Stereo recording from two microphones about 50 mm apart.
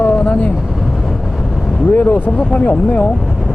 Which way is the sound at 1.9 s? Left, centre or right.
Left.